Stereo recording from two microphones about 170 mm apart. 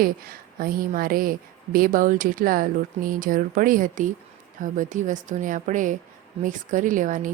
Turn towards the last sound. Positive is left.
turn(degrees=-50)  # may be behind; listen again after turning